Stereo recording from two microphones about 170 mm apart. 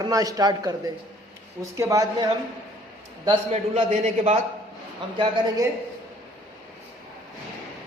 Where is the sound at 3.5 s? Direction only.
40° right (ahead or behind).